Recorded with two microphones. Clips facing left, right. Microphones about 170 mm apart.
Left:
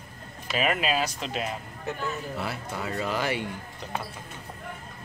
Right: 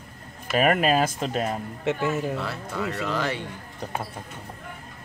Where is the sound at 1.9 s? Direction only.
90° right.